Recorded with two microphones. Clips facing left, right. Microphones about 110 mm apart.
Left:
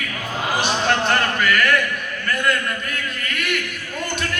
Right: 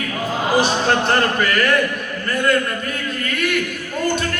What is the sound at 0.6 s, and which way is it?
Speech, 35° right (ahead or behind).